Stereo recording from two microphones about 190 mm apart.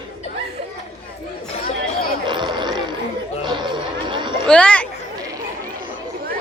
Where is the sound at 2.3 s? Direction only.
25° right (ahead or behind).